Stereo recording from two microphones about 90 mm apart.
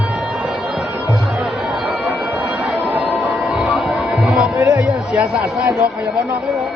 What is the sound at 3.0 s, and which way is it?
Music, 20° right (ahead or behind).